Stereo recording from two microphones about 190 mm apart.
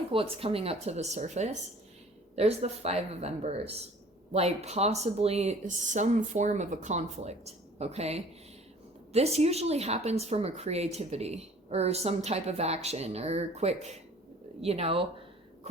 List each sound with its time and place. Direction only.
0.1 s a woman's voice: 30° right (ahead or behind)